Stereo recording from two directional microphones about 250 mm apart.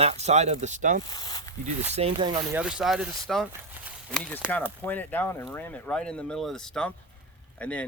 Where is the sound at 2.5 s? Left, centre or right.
Centre.